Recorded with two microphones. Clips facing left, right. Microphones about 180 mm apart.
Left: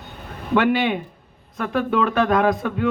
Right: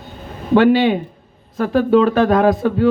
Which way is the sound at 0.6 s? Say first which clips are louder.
Right 6 dB; 30° right (ahead or behind).